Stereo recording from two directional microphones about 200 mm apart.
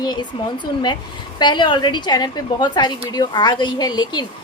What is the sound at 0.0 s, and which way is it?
Speech, 20° left (ahead or behind).